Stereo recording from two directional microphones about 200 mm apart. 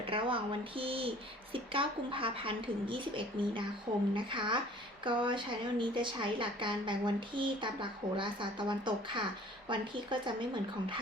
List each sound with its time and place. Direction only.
0.0 s a woman's voice: 25° right (ahead or behind)